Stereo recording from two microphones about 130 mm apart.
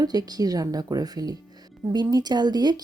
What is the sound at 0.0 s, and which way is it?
Speech, 30° right (ahead or behind).